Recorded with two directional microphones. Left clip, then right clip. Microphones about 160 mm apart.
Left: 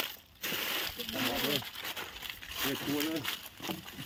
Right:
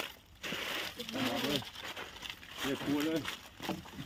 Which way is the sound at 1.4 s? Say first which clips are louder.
Left 2 dB; 40° left (ahead or behind).